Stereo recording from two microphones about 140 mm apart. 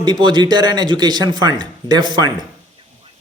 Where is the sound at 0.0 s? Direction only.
30° right (ahead or behind).